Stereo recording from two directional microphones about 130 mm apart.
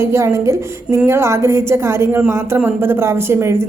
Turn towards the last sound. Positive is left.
turn(degrees=-20)  # may be behind; listen again after turning